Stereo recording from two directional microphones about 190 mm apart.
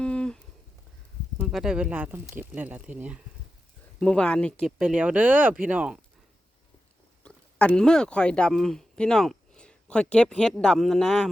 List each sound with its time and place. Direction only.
0.0 s a sound: 5° left (ahead or behind)
1.4 s speech: centre (ahead or behind)
4.0 s speech: 5° left (ahead or behind)
4.8 s speech: 5° right (ahead or behind)
7.3 s speech: 5° left (ahead or behind)